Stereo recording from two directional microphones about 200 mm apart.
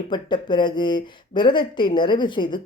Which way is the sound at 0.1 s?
25° left (ahead or behind).